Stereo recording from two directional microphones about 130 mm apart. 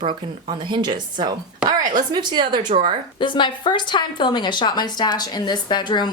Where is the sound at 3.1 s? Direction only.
40° left (ahead or behind).